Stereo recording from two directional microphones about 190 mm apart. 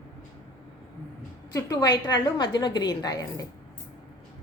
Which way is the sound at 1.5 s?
20° left (ahead or behind).